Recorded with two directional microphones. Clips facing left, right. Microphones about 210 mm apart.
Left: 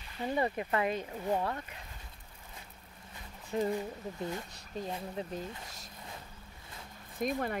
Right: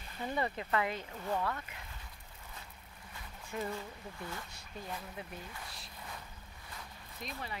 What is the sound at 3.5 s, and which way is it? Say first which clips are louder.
Speech: left 7 dB; 30° left (ahead or behind).